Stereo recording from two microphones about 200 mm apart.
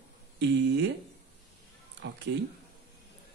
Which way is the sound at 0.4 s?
60° right (ahead or behind).